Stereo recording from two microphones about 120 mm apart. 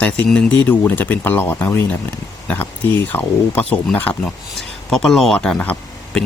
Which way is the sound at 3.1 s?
15° left (ahead or behind).